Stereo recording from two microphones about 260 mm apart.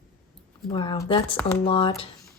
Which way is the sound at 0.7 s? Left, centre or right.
Centre.